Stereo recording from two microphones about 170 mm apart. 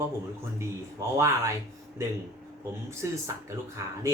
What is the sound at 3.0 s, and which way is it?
Speech, 15° right (ahead or behind).